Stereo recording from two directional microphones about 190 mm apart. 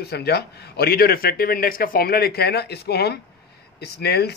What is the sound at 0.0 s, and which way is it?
A man's voice, 60° left (ahead or behind).